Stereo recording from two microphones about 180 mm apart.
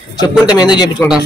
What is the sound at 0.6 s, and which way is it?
Speech, 25° left (ahead or behind).